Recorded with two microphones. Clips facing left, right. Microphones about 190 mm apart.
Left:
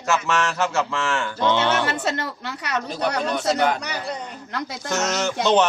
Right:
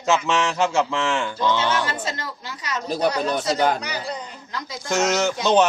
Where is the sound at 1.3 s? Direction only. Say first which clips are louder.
Left 3 dB; 20° left (ahead or behind).